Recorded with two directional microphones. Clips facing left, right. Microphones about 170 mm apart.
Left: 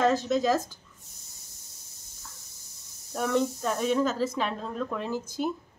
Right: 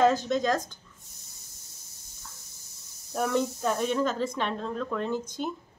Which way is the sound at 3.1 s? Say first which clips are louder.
Left 1 dB; centre (ahead or behind).